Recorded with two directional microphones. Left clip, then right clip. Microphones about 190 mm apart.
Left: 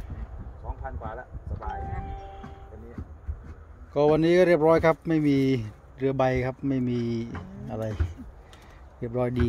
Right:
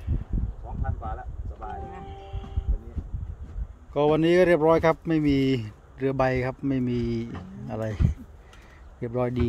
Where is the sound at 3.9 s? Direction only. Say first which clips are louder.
Even; 5° right (ahead or behind).